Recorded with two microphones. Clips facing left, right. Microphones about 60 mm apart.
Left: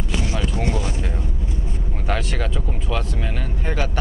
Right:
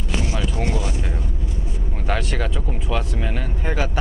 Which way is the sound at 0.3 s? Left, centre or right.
Centre.